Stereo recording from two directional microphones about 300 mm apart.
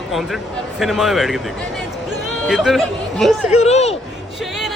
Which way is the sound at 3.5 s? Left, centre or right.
Left.